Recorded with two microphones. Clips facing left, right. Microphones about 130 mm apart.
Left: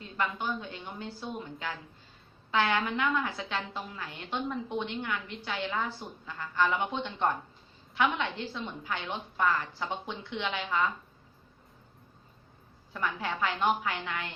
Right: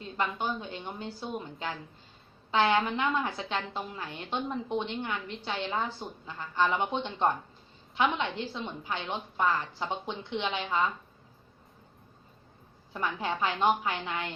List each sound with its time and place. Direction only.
0.0 s a woman's voice: 20° right (ahead or behind)
12.9 s a woman's voice: 20° right (ahead or behind)